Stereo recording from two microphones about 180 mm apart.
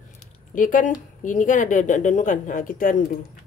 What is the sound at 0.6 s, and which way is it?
Speech, 45° left (ahead or behind).